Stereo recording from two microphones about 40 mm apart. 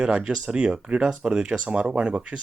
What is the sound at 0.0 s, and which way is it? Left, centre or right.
Speech, right.